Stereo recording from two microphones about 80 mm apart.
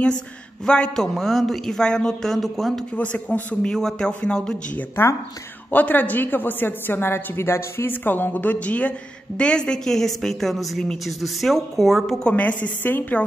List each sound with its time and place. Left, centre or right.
0.7 s a woman's voice: centre
3.0 s speech: centre
3.7 s a woman's voice: centre
12.3 s a woman's voice: centre